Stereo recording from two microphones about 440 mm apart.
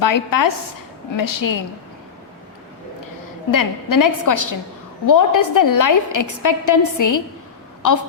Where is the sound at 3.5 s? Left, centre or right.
Left.